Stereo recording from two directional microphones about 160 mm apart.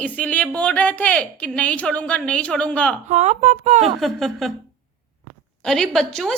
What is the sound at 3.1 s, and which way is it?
Speech, 45° right (ahead or behind).